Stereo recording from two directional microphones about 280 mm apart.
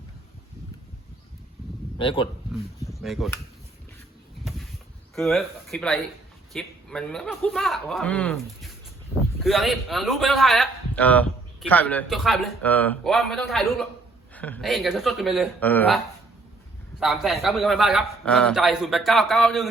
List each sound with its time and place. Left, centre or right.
2.0 s a man's voice: centre
2.8 s a sound: centre
5.1 s a man's voice: centre
17.0 s a man's voice: centre